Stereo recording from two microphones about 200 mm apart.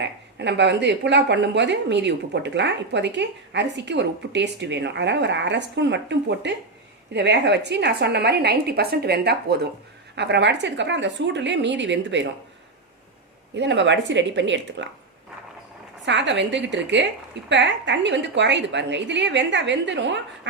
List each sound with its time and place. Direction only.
0.0 s speech: 60° right (ahead or behind)
13.6 s speech: 60° right (ahead or behind)
16.0 s speech: 60° right (ahead or behind)